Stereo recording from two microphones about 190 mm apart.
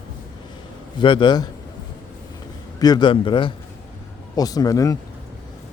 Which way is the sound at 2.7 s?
20° left (ahead or behind).